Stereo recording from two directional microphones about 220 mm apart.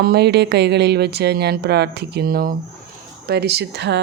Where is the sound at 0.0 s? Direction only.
45° right (ahead or behind).